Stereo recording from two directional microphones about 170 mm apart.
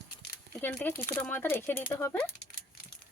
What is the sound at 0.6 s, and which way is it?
Speech, 10° left (ahead or behind).